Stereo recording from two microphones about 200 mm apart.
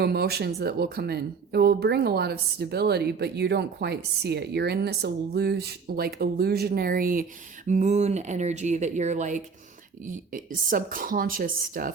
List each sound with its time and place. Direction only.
0.0 s speech: 50° right (ahead or behind)